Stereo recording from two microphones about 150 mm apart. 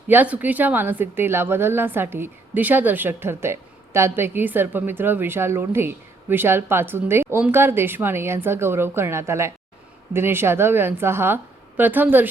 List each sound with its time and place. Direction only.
0.1 s a woman's voice: 10° right (ahead or behind)